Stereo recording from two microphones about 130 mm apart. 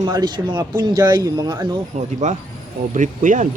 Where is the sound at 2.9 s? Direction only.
75° right (ahead or behind).